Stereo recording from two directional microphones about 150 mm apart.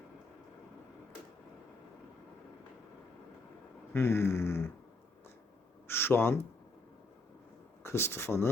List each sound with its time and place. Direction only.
3.9 s a sound: 15° left (ahead or behind)
5.9 s speech: 15° left (ahead or behind)
7.9 s speech: 15° left (ahead or behind)